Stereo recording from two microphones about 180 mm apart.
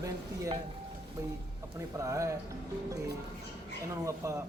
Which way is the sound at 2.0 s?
15° right (ahead or behind).